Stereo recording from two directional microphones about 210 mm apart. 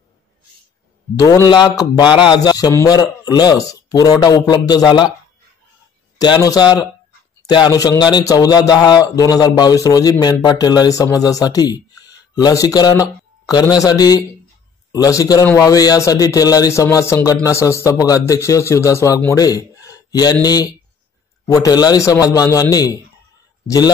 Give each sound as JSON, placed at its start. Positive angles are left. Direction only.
{"t": 1.1, "sound": "a man's voice", "side_deg": 15}
{"t": 6.1, "sound": "a man's voice", "side_deg": 20}